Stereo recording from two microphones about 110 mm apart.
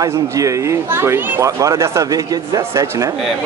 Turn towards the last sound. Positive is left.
turn(degrees=-30)  # may be behind; listen again after turning